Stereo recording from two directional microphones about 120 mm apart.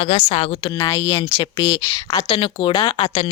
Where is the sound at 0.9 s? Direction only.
25° left (ahead or behind).